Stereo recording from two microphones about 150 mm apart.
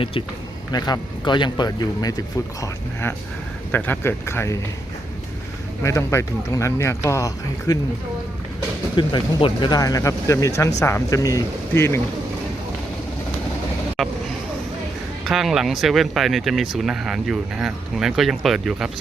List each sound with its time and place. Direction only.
0.7 s speech: 30° left (ahead or behind)
5.8 s speech: 20° left (ahead or behind)
9.0 s speech: 30° left (ahead or behind)
14.0 s speech: centre (ahead or behind)
15.2 s speech: centre (ahead or behind)